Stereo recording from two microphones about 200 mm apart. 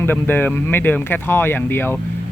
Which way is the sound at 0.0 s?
10° left (ahead or behind).